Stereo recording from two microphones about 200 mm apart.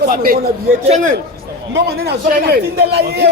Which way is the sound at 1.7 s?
55° right (ahead or behind).